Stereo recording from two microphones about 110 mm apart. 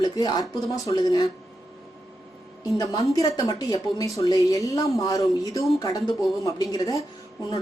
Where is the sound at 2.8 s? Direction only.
30° left (ahead or behind).